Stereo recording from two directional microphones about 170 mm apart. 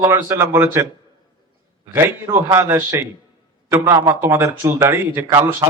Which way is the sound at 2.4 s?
15° right (ahead or behind).